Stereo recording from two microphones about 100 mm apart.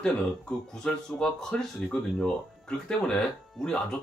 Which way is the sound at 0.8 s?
5° left (ahead or behind).